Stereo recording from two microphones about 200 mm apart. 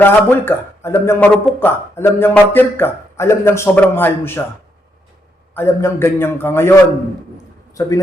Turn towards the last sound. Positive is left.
turn(degrees=15)  # may be behind; listen again after turning